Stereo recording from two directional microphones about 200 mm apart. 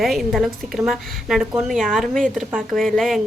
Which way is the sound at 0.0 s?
Centre (ahead or behind).